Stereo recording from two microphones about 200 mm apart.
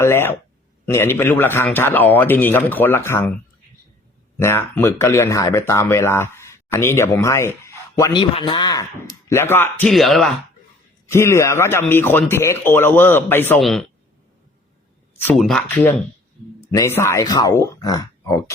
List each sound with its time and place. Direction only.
0.0 s speech: 10° left (ahead or behind)
4.4 s speech: 10° left (ahead or behind)
11.0 s speech: 15° left (ahead or behind)
15.2 s speech: 5° left (ahead or behind)